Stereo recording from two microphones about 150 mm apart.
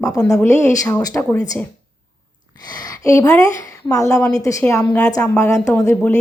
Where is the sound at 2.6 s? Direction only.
25° left (ahead or behind).